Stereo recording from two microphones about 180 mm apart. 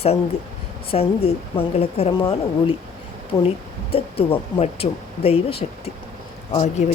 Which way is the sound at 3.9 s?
30° left (ahead or behind).